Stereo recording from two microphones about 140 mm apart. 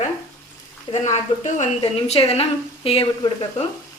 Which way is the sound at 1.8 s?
45° left (ahead or behind).